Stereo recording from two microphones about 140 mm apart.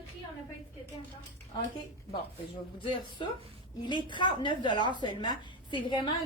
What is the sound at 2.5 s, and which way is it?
A woman's voice, 35° left (ahead or behind).